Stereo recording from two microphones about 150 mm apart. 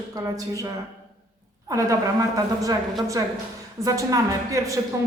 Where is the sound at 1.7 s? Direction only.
20° right (ahead or behind).